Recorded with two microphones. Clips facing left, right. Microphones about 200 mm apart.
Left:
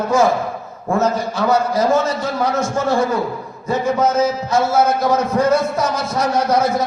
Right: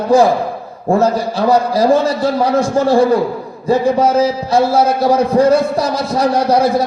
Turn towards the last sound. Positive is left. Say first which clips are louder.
# right 4 dB
turn(degrees=-35)  # may be behind; listen again after turning